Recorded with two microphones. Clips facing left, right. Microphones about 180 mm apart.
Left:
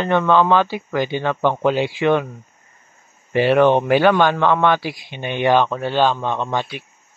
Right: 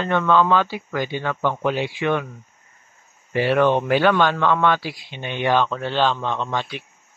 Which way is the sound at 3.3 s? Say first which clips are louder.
Left 4 dB; 20° left (ahead or behind).